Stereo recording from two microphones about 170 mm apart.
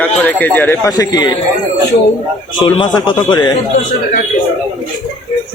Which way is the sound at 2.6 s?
30° left (ahead or behind).